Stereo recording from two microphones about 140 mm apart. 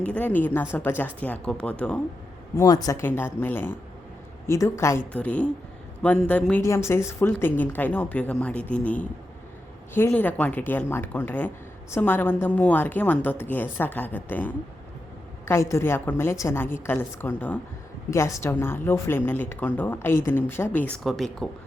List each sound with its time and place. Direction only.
0.0 s speech: 10° left (ahead or behind)
2.6 s a woman's voice: 25° left (ahead or behind)
5.1 s a woman's voice: 10° left (ahead or behind)
21.0 s speech: centre (ahead or behind)